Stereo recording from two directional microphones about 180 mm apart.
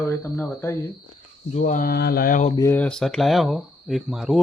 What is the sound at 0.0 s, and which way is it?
Speech, 10° left (ahead or behind).